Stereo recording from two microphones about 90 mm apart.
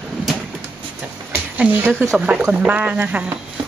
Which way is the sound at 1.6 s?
15° right (ahead or behind).